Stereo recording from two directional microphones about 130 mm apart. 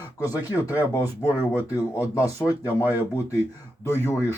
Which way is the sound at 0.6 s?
15° right (ahead or behind).